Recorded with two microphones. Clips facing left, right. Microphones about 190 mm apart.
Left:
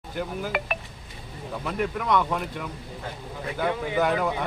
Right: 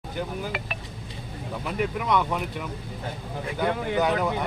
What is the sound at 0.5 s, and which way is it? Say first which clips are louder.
Speech: left 5 dB; 55° left (ahead or behind).